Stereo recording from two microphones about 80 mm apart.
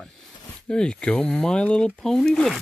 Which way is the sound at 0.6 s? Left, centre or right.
Centre.